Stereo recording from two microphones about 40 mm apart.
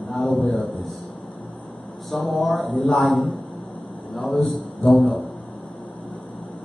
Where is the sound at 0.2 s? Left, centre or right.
Left.